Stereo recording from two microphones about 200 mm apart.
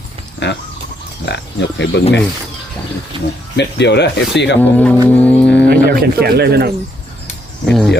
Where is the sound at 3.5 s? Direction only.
60° left (ahead or behind).